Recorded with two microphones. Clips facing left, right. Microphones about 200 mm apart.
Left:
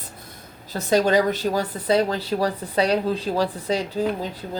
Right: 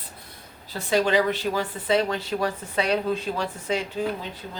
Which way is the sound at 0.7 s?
40° left (ahead or behind).